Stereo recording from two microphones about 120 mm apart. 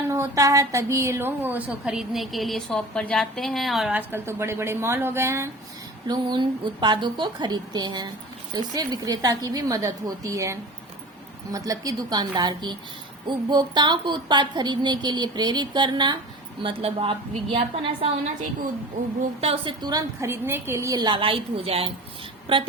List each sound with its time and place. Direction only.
0.1 s a woman's voice: 25° right (ahead or behind); by 3.9 s centre (ahead or behind)
3.9 s a woman's voice: 20° right (ahead or behind)
6.1 s a woman's voice: 40° right (ahead or behind)
16.6 s a woman's voice: 50° right (ahead or behind)
19.4 s a woman's voice: 55° right (ahead or behind)
19.8 s a woman's voice: 30° right (ahead or behind); by 22.6 s 45° right (ahead or behind)